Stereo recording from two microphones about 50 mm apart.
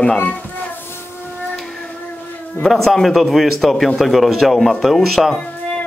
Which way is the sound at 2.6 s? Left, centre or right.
Centre.